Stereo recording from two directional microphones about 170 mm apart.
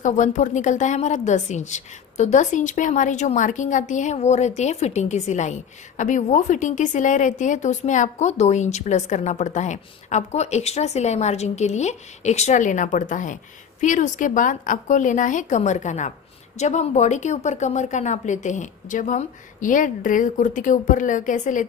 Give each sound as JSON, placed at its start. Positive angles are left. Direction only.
{"t": 0.0, "sound": "a woman's voice", "side_deg": 45}